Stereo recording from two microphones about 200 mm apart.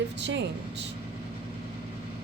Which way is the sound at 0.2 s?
60° right (ahead or behind).